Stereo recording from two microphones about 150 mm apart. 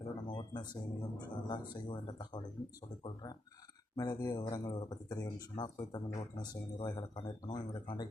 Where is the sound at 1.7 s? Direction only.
30° left (ahead or behind).